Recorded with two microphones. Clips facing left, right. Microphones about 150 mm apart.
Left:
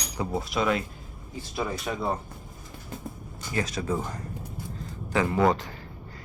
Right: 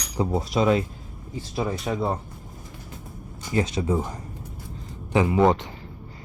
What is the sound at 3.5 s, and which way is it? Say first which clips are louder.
Speech: right 5 dB; 25° right (ahead or behind).